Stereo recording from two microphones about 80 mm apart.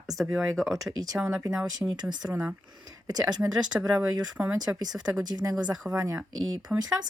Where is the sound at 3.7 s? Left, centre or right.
Centre.